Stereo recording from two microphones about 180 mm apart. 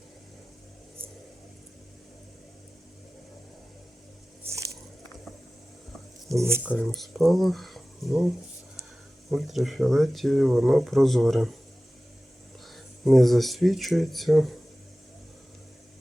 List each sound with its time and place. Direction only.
6.2 s speech: 15° right (ahead or behind)
6.6 s speech: 5° left (ahead or behind)
9.3 s speech: centre (ahead or behind)
12.7 s speech: centre (ahead or behind)